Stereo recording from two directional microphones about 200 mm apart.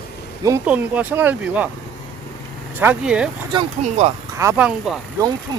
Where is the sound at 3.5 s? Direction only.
30° right (ahead or behind).